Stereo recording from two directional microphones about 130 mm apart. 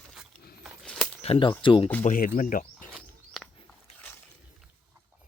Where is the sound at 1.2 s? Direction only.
45° left (ahead or behind).